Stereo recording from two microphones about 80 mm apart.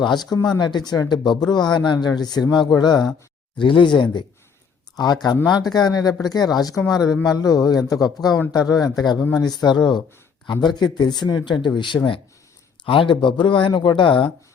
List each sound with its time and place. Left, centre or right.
0.0 s speech: left
2.4 s speech: centre
2.6 s speech: left
3.6 s speech: left
4.9 s speech: left
9.3 s speech: left
11.9 s speech: left
12.8 s speech: left